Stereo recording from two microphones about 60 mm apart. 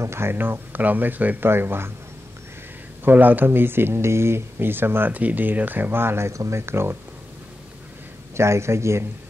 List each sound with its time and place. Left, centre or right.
0.0 s speech: right
1.5 s speech: right
3.0 s speech: right
6.3 s speech: right
6.6 s speech: right
8.4 s speech: right